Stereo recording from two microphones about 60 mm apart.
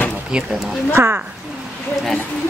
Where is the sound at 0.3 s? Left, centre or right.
Centre.